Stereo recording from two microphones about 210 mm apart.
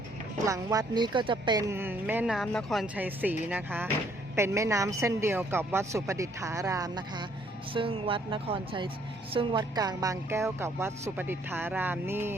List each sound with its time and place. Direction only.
0.4 s a woman's voice: 15° right (ahead or behind)